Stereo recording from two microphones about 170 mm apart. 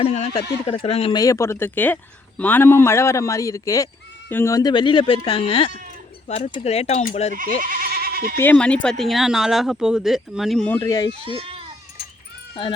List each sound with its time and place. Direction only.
0.0 s speech: 35° left (ahead or behind)
1.1 s a man's voice: 20° left (ahead or behind); by 7.3 s 45° left (ahead or behind)
7.6 s goat: 55° right (ahead or behind)
8.4 s speech: 10° left (ahead or behind)
11.3 s speech: 35° right (ahead or behind)